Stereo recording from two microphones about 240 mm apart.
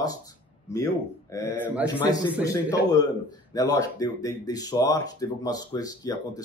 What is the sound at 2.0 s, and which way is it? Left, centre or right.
Speech, centre.